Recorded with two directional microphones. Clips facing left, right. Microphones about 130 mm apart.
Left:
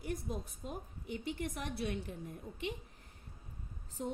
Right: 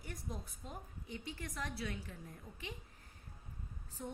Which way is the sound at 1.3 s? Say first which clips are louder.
Left 4 dB; 25° left (ahead or behind).